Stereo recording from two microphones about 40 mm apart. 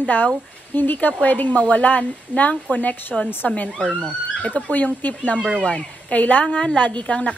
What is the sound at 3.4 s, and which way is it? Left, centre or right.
Speech, left.